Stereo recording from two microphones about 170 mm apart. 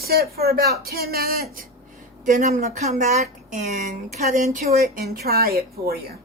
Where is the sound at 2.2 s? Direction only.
50° right (ahead or behind).